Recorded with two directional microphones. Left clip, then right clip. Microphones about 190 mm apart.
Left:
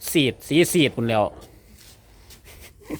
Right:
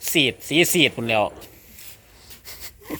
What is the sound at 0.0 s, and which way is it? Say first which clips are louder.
Speech: right 2 dB; 30° left (ahead or behind).